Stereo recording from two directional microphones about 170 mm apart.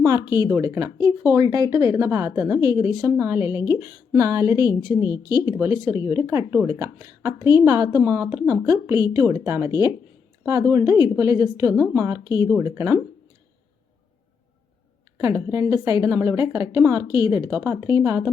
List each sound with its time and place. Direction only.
0.0 s a woman's voice: 20° right (ahead or behind)
15.2 s a woman's voice: 15° right (ahead or behind)